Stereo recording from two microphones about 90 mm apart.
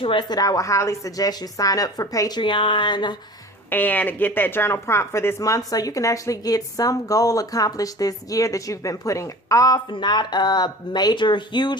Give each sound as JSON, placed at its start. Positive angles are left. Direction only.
{"t": 0.0, "sound": "speech", "side_deg": 70}
{"t": 0.3, "sound": "a woman's voice", "side_deg": 45}
{"t": 2.4, "sound": "speech", "side_deg": 65}
{"t": 3.7, "sound": "speech", "side_deg": 20}
{"t": 9.9, "sound": "speech", "side_deg": 55}